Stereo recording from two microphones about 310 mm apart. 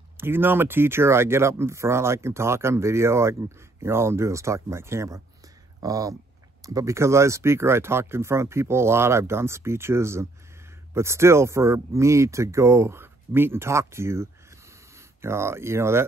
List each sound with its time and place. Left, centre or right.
0.2 s speech: centre